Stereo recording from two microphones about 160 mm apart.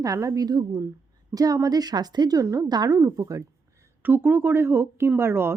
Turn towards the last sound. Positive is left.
turn(degrees=-15)  # may be behind; listen again after turning